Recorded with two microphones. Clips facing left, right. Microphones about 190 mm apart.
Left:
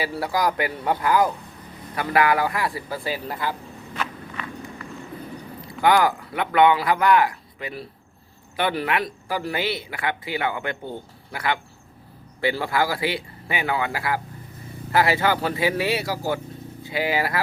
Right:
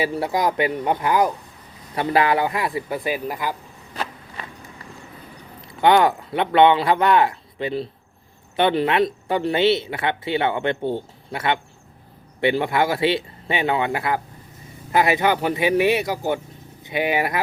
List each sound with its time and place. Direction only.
0.0 s speech: 25° right (ahead or behind)
3.9 s walk: 35° right (ahead or behind)
5.8 s speech: 25° right (ahead or behind)